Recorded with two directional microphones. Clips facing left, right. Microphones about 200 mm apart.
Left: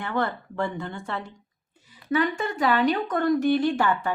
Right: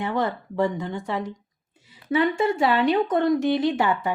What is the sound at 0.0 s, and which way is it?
A woman's voice, 20° right (ahead or behind).